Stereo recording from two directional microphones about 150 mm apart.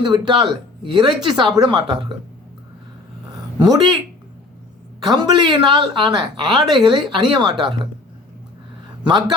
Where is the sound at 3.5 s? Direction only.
25° right (ahead or behind).